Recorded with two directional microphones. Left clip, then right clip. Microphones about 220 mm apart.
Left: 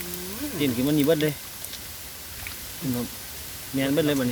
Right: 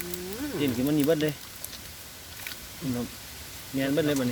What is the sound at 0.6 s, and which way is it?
Speech, 5° left (ahead or behind).